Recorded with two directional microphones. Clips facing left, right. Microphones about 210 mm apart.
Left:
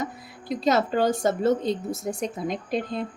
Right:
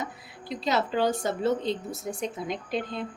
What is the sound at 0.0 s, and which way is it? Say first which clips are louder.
A woman's voice: left 4 dB; 45° left (ahead or behind).